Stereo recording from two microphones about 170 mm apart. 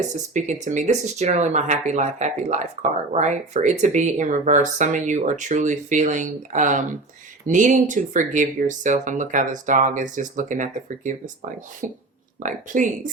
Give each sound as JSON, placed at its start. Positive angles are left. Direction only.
{"t": 0.3, "sound": "speech", "side_deg": -45}